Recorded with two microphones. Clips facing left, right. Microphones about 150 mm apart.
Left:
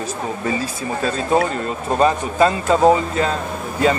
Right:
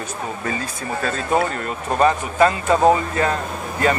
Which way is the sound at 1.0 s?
25° left (ahead or behind).